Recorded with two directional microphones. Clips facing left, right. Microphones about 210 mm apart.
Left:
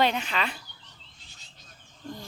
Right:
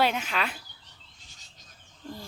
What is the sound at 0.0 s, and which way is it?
Speech, 5° right (ahead or behind).